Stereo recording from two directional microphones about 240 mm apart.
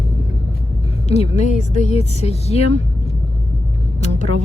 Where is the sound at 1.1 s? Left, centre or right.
Left.